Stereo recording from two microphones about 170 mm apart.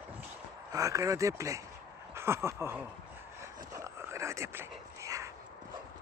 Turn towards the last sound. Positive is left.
turn(degrees=-20)  # may be behind; listen again after turning